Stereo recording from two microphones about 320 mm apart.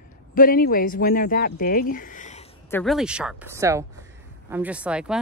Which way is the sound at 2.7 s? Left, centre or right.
Centre.